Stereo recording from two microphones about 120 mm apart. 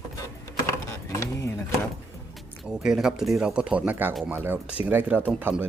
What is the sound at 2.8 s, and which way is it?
Speech, 5° right (ahead or behind).